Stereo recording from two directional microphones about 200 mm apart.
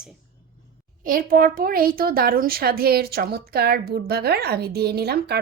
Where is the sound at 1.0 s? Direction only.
45° right (ahead or behind).